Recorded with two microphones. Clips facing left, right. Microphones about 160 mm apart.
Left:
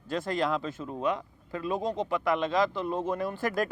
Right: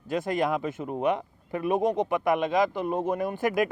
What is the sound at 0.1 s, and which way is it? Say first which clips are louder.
Speech: right 3 dB; 15° right (ahead or behind).